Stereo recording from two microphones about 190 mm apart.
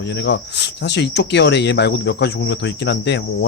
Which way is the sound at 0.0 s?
65° left (ahead or behind).